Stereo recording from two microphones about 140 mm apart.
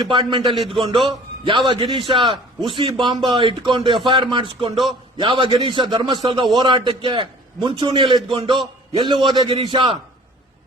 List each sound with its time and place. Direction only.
0.0 s a man's voice: 35° right (ahead or behind)